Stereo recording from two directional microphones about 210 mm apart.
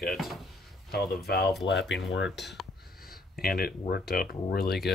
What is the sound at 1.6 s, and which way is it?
Speech, 60° left (ahead or behind).